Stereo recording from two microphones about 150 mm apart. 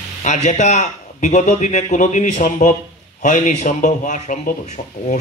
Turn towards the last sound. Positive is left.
turn(degrees=55)  # may be behind; listen again after turning